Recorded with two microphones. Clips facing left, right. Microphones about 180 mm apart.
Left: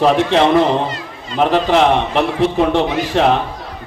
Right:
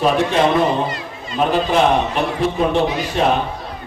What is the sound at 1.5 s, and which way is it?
Speech, 90° left.